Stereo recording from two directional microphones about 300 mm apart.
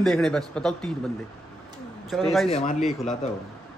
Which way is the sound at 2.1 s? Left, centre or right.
Centre.